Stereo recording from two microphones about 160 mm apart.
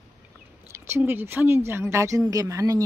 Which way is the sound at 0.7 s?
15° right (ahead or behind).